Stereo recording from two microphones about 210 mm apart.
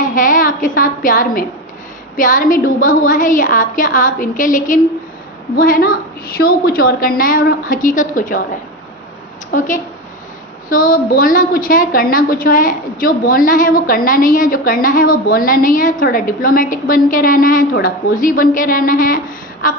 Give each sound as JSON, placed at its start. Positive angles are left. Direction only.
{"t": 0.0, "sound": "a woman's voice", "side_deg": 40}
{"t": 9.5, "sound": "a woman's voice", "side_deg": 35}